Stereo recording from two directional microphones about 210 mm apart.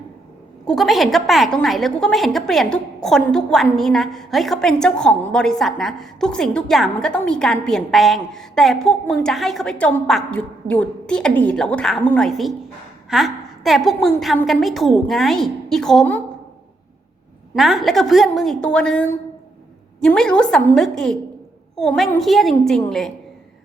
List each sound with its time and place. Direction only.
0.7 s a woman's voice: centre (ahead or behind)
17.5 s a woman's voice: centre (ahead or behind)